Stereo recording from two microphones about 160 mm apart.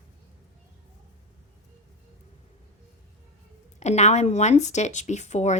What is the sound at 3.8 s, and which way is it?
A woman's voice, 45° left (ahead or behind).